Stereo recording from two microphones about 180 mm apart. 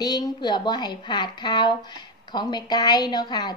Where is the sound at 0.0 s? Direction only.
20° left (ahead or behind).